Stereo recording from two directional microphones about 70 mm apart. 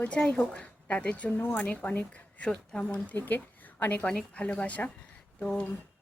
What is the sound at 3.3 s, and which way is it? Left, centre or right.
Speech, left.